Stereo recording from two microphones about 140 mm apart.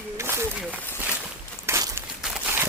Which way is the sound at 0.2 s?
20° right (ahead or behind).